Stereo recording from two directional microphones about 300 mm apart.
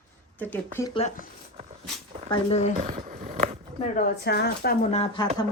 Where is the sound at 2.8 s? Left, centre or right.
Right.